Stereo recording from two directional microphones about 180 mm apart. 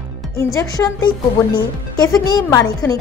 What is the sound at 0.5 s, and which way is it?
Speech, 20° left (ahead or behind).